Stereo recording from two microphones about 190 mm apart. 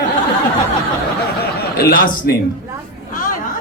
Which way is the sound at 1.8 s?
50° left (ahead or behind).